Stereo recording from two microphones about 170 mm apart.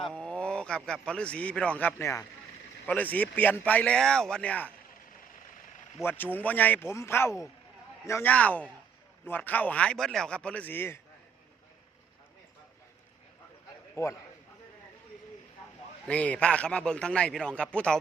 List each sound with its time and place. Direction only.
0.0 s a man's voice: 5° left (ahead or behind)
6.0 s a man's voice: 10° left (ahead or behind)
13.9 s a man's voice: 15° left (ahead or behind)
16.0 s a man's voice: 10° left (ahead or behind)